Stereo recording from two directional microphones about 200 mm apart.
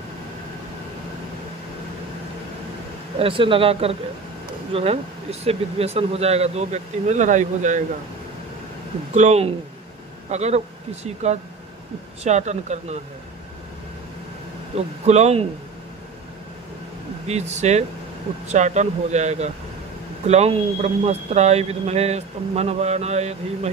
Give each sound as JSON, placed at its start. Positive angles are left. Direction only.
{"t": 3.2, "sound": "speech", "side_deg": -25}
{"t": 9.1, "sound": "speech", "side_deg": -35}
{"t": 12.2, "sound": "speech", "side_deg": -35}
{"t": 14.7, "sound": "speech", "side_deg": -30}
{"t": 17.3, "sound": "speech", "side_deg": -35}